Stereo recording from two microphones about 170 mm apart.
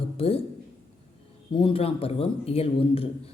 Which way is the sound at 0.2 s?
35° left (ahead or behind).